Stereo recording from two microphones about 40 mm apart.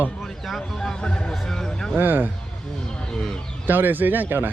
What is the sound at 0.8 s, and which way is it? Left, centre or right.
Speech, left.